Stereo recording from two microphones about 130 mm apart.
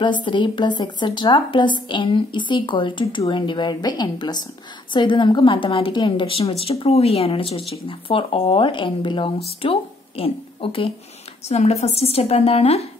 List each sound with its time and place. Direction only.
0.0 s a woman's voice: 35° left (ahead or behind)
11.4 s a woman's voice: 55° left (ahead or behind)